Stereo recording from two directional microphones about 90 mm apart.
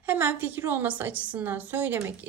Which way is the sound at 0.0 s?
25° right (ahead or behind).